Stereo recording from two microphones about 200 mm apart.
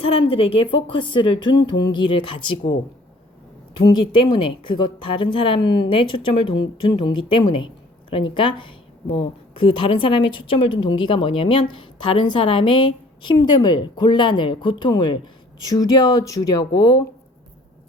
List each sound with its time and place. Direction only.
0.0 s a woman's voice: 30° left (ahead or behind)
4.3 s a woman's voice: 25° left (ahead or behind)